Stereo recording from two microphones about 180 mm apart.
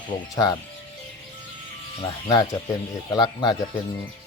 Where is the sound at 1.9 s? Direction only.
30° left (ahead or behind).